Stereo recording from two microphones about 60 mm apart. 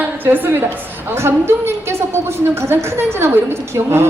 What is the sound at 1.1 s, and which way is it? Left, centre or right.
A woman's voice, right.